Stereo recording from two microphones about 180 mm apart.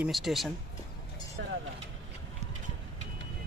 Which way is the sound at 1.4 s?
80° right.